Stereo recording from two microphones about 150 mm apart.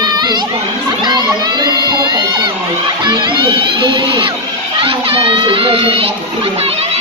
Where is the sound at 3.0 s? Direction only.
30° right (ahead or behind).